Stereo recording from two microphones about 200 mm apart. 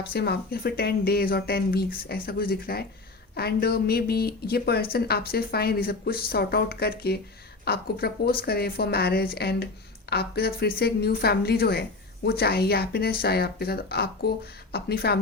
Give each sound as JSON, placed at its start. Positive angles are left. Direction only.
{"t": 0.1, "sound": "a woman's voice", "side_deg": 50}